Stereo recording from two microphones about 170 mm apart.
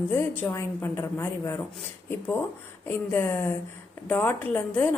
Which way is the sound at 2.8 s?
15° left (ahead or behind).